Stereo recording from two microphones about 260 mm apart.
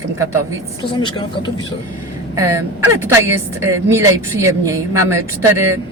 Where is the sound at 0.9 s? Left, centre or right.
Centre.